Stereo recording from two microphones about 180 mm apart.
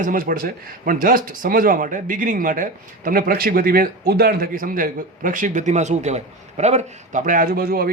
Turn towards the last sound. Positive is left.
turn(degrees=-55)  # may be behind; listen again after turning